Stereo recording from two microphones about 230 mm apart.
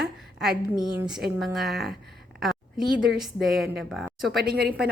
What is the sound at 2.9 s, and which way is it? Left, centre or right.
A woman's voice, centre.